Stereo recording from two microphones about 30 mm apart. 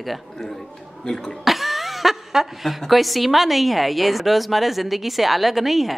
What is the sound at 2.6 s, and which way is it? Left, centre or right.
A woman's voice, centre.